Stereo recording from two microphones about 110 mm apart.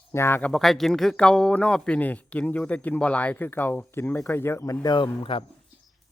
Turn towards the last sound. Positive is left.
turn(degrees=50)  # may be behind; listen again after turning